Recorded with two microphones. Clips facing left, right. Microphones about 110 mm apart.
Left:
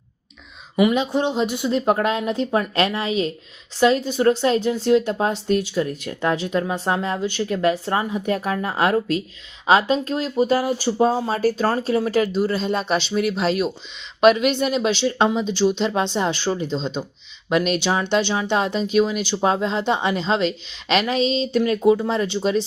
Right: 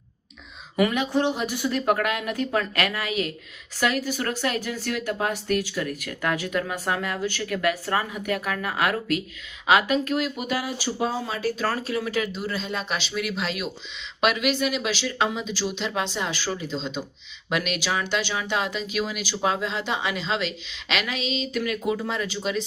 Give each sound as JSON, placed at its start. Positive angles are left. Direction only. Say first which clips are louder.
{"t": 0.8, "sound": "speech", "louder": "left 4 dB", "side_deg": 20}